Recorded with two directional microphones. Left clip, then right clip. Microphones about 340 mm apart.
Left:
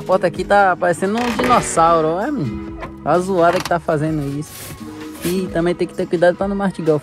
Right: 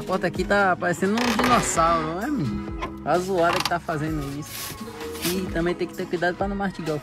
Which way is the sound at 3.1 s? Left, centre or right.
Left.